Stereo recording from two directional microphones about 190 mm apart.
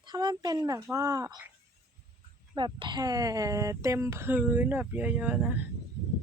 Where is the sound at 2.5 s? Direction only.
25° right (ahead or behind); by 5.5 s 5° right (ahead or behind).